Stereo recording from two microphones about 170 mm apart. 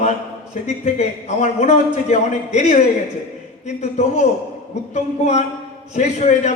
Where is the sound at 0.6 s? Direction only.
40° left (ahead or behind).